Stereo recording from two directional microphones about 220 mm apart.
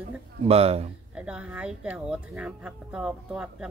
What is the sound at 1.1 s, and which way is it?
Speech, 5° right (ahead or behind).